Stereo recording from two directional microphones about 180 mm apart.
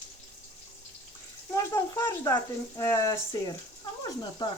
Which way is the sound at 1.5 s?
20° left (ahead or behind).